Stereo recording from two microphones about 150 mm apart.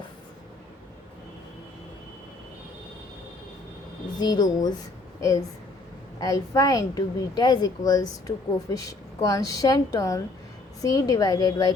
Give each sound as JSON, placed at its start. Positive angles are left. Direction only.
{"t": 4.2, "sound": "a woman's voice", "side_deg": 25}